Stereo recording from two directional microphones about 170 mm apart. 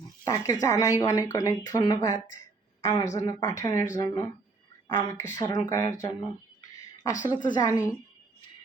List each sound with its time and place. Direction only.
0.3 s speech: 20° left (ahead or behind)
6.6 s a sound: 20° left (ahead or behind)
7.3 s speech: 25° left (ahead or behind)